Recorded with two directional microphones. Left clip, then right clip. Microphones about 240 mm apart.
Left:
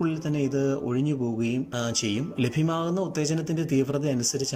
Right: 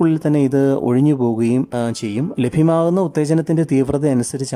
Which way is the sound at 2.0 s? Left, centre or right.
Right.